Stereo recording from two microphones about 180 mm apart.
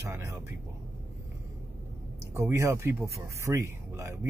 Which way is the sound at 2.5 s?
15° right (ahead or behind).